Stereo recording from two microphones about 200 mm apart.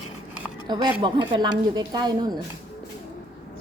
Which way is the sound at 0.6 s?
20° right (ahead or behind).